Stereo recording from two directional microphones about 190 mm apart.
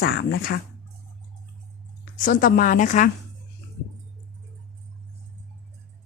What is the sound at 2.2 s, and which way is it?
Speech, 45° left (ahead or behind).